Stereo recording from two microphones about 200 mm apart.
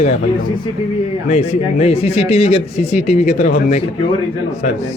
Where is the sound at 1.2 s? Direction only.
35° left (ahead or behind).